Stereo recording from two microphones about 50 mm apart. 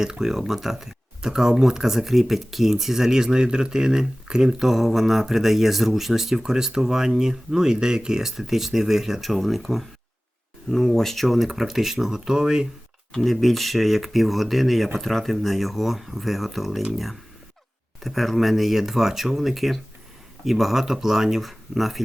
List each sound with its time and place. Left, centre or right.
0.0 s speech: centre
13.2 s speech: centre
18.0 s speech: centre